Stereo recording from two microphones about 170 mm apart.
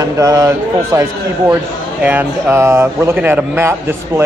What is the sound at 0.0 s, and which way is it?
Speech, 20° right (ahead or behind).